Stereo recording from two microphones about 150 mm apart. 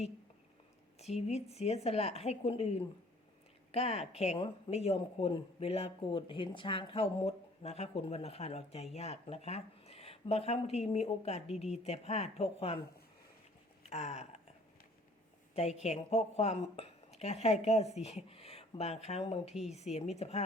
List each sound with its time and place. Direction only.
0.9 s a woman's voice: 45° left (ahead or behind)
13.8 s a sound: 45° left (ahead or behind)
15.5 s a woman's voice: 45° left (ahead or behind)